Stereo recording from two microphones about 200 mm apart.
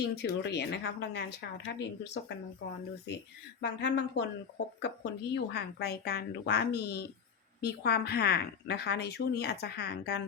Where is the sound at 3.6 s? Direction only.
60° left (ahead or behind).